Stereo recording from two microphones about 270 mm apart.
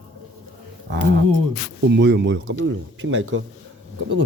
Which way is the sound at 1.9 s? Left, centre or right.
Right.